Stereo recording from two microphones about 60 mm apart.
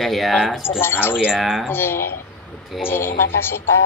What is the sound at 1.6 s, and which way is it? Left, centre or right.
Speech, left.